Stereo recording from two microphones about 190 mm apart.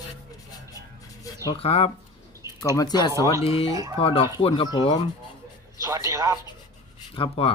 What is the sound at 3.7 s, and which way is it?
Speech, 20° right (ahead or behind).